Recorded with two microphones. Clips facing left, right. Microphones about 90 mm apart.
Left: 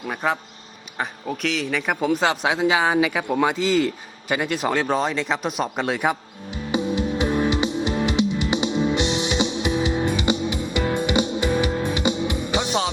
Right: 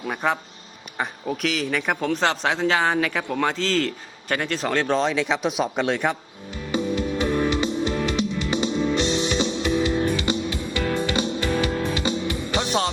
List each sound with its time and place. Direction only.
0.1 s speech: centre (ahead or behind)
6.7 s music: 20° left (ahead or behind)